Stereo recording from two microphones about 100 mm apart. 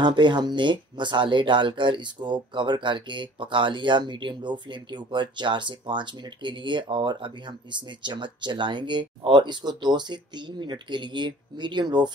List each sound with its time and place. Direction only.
0.0 s speech: 50° right (ahead or behind)